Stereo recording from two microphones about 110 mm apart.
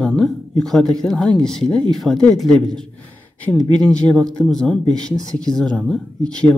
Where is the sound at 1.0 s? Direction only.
5° left (ahead or behind).